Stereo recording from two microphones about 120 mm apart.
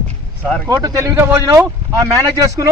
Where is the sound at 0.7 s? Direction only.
30° right (ahead or behind).